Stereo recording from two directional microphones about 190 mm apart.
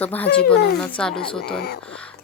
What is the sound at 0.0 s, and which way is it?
Speech, 10° left (ahead or behind).